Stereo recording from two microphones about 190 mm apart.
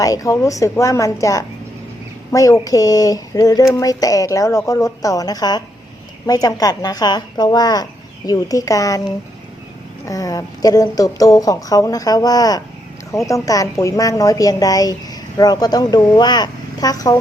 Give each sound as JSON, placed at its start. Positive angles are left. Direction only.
{"t": 0.0, "sound": "a woman's voice", "side_deg": 15}
{"t": 10.1, "sound": "a woman's voice", "side_deg": 20}